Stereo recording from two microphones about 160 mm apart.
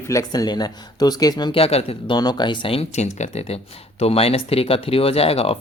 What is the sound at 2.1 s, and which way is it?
Speech, 25° left (ahead or behind).